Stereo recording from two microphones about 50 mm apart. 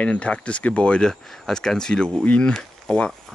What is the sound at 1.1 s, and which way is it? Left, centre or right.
Speech, centre.